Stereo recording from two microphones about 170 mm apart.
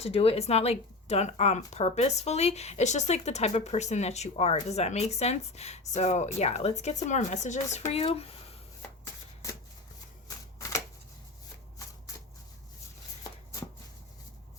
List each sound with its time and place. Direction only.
0.0 s speech: 35° left (ahead or behind)
10.2 s shuffling cards: 20° left (ahead or behind)